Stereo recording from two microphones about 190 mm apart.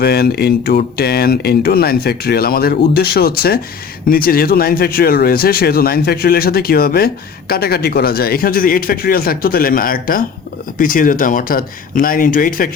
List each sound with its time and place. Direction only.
0.0 s speech: 55° left (ahead or behind)